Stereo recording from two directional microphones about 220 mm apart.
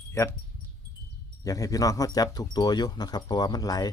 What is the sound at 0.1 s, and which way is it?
Speech, 10° left (ahead or behind).